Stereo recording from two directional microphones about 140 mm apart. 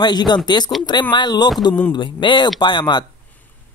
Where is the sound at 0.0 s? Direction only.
30° left (ahead or behind).